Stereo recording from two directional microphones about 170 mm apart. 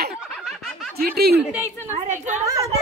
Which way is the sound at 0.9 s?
65° right (ahead or behind).